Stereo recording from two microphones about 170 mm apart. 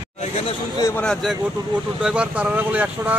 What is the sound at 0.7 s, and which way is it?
Speech, 20° left (ahead or behind).